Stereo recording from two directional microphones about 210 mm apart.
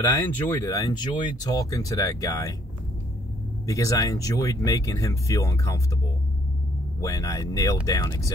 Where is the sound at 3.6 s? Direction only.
15° left (ahead or behind).